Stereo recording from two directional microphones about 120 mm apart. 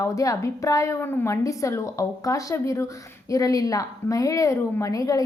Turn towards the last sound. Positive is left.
turn(degrees=30)  # may be behind; listen again after turning